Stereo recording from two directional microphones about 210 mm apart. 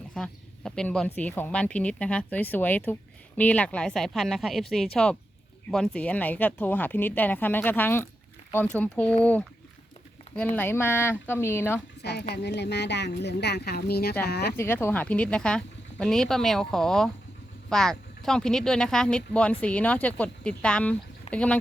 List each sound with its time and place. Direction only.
0.1 s speech: 5° left (ahead or behind)
12.3 s a woman's voice: 55° left (ahead or behind)
14.5 s speech: 10° left (ahead or behind)